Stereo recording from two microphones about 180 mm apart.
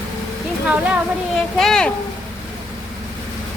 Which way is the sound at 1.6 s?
5° left (ahead or behind).